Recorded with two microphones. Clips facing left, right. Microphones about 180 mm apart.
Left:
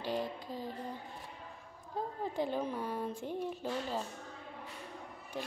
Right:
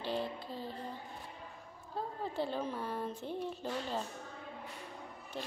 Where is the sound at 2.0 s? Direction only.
15° left (ahead or behind).